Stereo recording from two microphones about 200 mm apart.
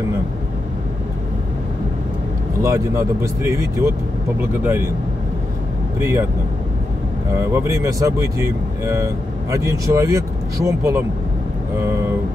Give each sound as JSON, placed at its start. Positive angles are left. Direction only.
{"t": 2.6, "sound": "speech", "side_deg": -15}
{"t": 5.9, "sound": "speech", "side_deg": -15}
{"t": 7.3, "sound": "speech", "side_deg": -15}